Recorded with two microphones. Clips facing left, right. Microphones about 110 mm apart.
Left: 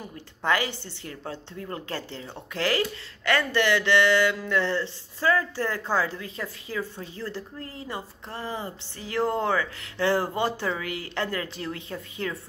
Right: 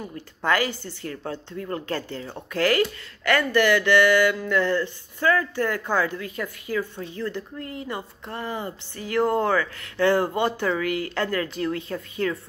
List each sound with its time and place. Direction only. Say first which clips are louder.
0.4 s a woman's voice: right 2 dB; 20° left (ahead or behind)